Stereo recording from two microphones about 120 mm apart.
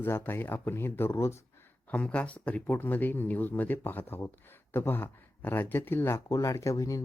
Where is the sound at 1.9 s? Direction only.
10° left (ahead or behind).